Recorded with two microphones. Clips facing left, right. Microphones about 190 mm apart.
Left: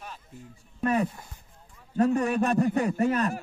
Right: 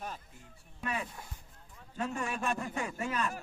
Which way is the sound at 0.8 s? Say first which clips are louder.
Left 12 dB; 45° left (ahead or behind).